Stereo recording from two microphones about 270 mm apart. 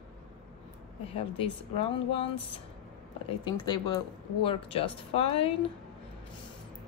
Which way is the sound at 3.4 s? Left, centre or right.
Centre.